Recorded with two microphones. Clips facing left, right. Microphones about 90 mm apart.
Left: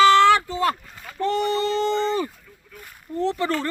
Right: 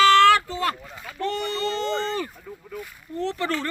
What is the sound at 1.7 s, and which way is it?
Speech, 35° right (ahead or behind).